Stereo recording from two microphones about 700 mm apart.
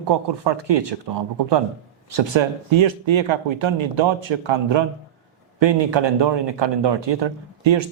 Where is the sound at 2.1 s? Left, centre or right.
Right.